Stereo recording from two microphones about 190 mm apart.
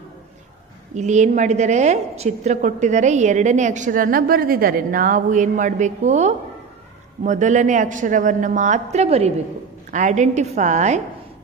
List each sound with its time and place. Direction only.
0.9 s a woman's voice: 40° right (ahead or behind)